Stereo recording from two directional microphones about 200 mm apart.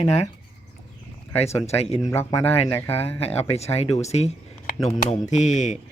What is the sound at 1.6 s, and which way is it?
Speech, 30° left (ahead or behind).